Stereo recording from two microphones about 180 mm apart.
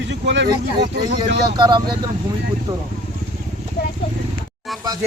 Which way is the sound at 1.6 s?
25° right (ahead or behind).